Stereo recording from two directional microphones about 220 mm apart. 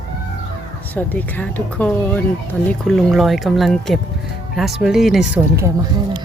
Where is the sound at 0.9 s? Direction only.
10° left (ahead or behind).